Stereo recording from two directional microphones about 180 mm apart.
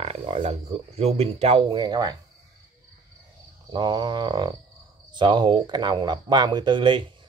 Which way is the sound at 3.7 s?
25° right (ahead or behind).